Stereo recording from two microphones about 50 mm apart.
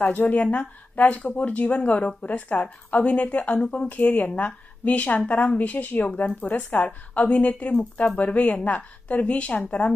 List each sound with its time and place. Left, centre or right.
0.0 s a woman's voice: left
0.5 s a woman's voice: left